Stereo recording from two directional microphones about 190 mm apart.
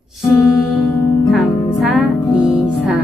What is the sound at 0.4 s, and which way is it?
Music, centre (ahead or behind).